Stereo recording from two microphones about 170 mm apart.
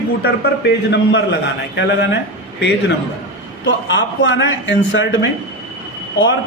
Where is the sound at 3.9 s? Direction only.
90° left.